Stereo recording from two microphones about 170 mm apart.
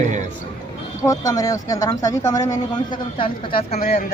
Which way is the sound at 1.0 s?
20° left (ahead or behind).